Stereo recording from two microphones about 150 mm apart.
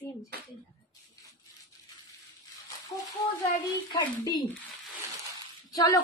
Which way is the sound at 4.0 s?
30° left (ahead or behind).